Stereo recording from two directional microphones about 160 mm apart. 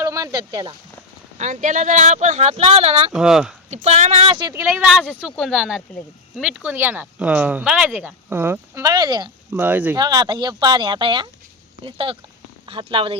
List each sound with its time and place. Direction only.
0.0 s speech: 20° right (ahead or behind)
1.4 s speech: 50° right (ahead or behind)
3.1 s speech: 5° right (ahead or behind)
3.7 s speech: 45° right (ahead or behind)
4.5 s speech: 15° right (ahead or behind)
9.5 s speech: 10° right (ahead or behind)
10.0 s speech: 25° right (ahead or behind)